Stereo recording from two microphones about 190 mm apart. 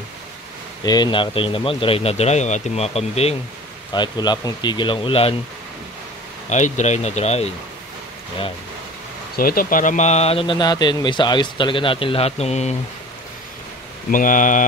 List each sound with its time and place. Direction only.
0.8 s speech: 20° left (ahead or behind)
3.9 s speech: 25° left (ahead or behind)
6.5 s speech: 40° left (ahead or behind)
9.4 s speech: 50° left (ahead or behind)
14.1 s speech: 45° left (ahead or behind)